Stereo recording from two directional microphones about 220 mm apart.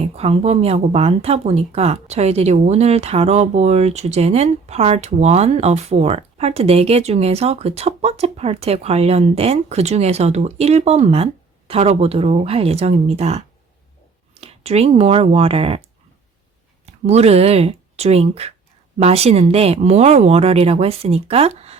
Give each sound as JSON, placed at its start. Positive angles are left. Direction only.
{"t": 0.0, "sound": "speech", "side_deg": -30}
{"t": 16.8, "sound": "speech", "side_deg": -30}